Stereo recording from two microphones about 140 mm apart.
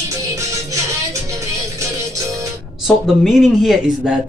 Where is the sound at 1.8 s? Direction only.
20° right (ahead or behind).